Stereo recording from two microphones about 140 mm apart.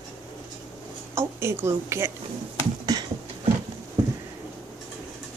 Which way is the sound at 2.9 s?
25° right (ahead or behind).